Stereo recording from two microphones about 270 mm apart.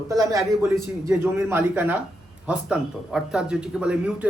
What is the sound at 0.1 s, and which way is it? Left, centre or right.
Speech, centre.